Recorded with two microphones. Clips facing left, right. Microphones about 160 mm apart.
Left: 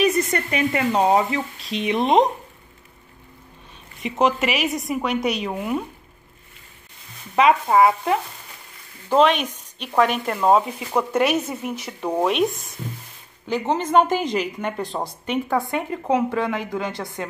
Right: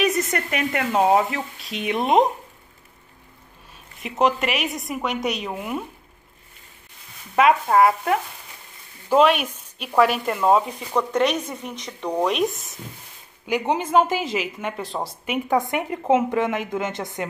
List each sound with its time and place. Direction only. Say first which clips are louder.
0.0 s speech: left 2 dB; centre (ahead or behind)
4.0 s speech: left 1 dB; centre (ahead or behind)
7.3 s speech: left 1 dB; centre (ahead or behind)
13.5 s speech: even; 10° right (ahead or behind)
15.5 s a woman's voice: right 5 dB; 20° right (ahead or behind)